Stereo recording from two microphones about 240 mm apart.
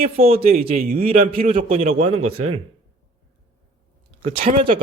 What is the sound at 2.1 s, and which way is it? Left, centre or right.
Speech, right.